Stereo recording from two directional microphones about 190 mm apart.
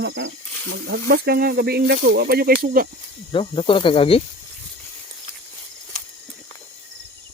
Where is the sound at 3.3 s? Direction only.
25° left (ahead or behind).